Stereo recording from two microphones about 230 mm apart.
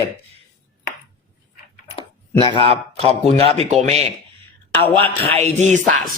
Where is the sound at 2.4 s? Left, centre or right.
Left.